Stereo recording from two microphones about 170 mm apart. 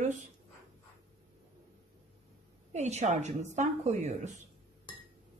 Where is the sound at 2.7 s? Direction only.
40° right (ahead or behind).